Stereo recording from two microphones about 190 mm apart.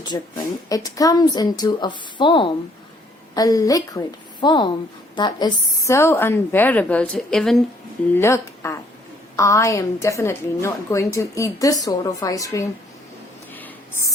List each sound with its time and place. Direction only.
0.0 s a woman's voice: 20° left (ahead or behind); by 7.6 s centre (ahead or behind)
8.1 s a woman's voice: 15° left (ahead or behind)
13.5 s a sound: 10° left (ahead or behind)